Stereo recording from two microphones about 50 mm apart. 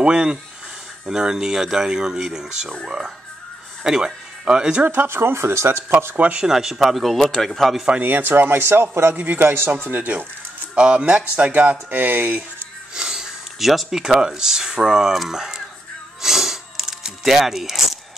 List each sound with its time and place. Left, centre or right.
0.0 s speech: centre
3.8 s speech: centre
4.8 s speech: right
6.1 s speech: right
6.4 s speech: centre
8.0 s speech: right
9.1 s speech: right
10.7 s speech: right
12.9 s speech: centre
16.2 s a sound: centre